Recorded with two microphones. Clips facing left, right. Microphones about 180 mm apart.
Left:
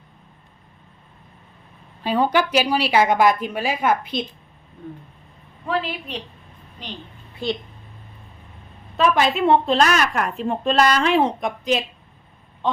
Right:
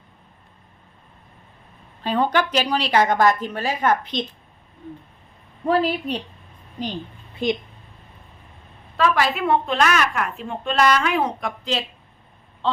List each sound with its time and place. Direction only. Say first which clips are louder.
2.0 s a woman's voice: left 1 dB; 10° left (ahead or behind)
5.6 s a woman's voice: right 5 dB; 40° right (ahead or behind)
7.4 s a woman's voice: right 3 dB; 20° right (ahead or behind)
9.0 s a woman's voice: left 2 dB; 25° left (ahead or behind)